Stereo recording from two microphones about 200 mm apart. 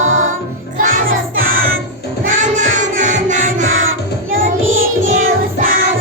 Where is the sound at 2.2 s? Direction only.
40° right (ahead or behind).